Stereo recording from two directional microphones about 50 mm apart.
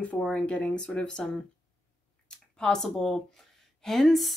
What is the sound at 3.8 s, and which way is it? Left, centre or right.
Speech, centre.